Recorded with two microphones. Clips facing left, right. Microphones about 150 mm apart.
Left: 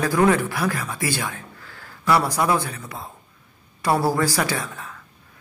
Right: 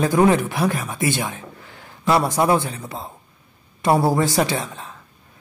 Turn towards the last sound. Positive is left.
turn(degrees=-25)  # may be behind; listen again after turning